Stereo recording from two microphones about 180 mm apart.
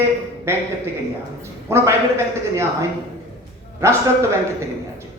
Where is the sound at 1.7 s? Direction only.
15° right (ahead or behind).